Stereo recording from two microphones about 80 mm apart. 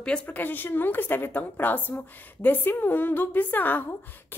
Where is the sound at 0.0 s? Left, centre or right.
Centre.